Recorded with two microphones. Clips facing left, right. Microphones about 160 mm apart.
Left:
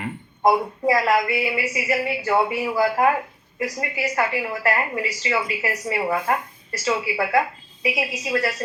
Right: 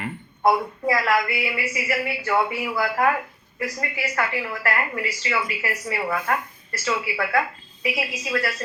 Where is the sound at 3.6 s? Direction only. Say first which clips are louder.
Left 3 dB; 15° left (ahead or behind).